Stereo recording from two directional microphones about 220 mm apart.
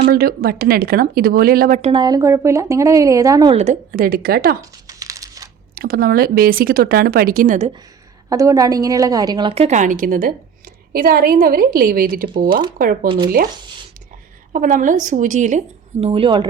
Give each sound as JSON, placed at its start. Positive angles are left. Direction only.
{"t": 0.0, "sound": "speech", "side_deg": -45}
{"t": 1.9, "sound": "a woman's voice", "side_deg": -20}
{"t": 3.6, "sound": "speech", "side_deg": -35}
{"t": 4.9, "sound": "crumpling", "side_deg": -15}
{"t": 5.7, "sound": "speech", "side_deg": -40}
{"t": 8.3, "sound": "a woman's voice", "side_deg": -15}
{"t": 13.1, "sound": "speech", "side_deg": -20}
{"t": 14.5, "sound": "speech", "side_deg": -35}